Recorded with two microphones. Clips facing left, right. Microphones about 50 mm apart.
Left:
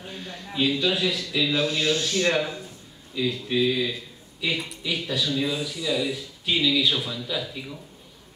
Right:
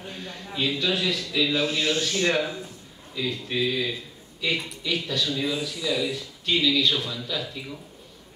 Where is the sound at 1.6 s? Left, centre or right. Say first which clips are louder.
Left 1 dB; right.